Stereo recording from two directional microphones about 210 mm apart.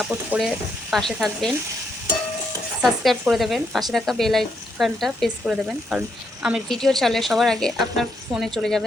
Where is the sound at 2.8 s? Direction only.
Centre (ahead or behind).